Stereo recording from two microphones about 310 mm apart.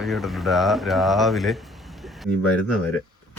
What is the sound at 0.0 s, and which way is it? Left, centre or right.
Speech, centre.